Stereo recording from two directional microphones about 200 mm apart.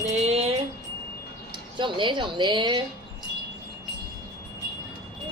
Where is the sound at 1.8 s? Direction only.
25° right (ahead or behind).